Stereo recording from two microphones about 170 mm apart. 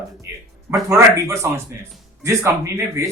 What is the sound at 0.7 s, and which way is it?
Speech, 15° right (ahead or behind).